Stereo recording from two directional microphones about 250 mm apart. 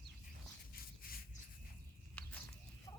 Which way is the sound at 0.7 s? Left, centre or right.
Left.